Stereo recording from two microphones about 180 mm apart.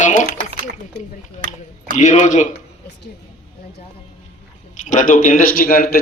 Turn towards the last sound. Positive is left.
turn(degrees=50)  # may be behind; listen again after turning